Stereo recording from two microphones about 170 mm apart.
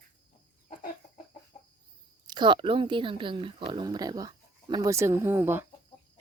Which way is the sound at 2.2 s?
25° right (ahead or behind).